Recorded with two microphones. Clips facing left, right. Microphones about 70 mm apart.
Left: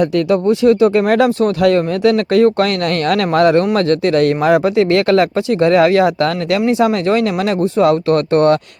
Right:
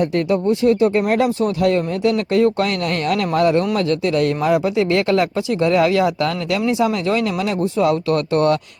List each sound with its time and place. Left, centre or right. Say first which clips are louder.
0.3 s speech: left 4 dB; left
1.6 s speech: left 5 dB; left